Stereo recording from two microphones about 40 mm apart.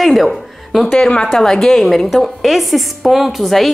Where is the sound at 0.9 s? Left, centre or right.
Left.